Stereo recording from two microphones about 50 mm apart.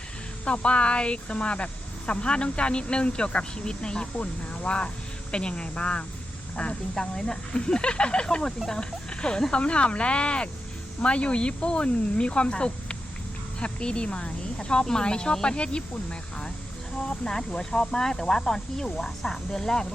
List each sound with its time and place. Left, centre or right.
0.4 s speech: left
8.5 s speech: centre
8.8 s speech: centre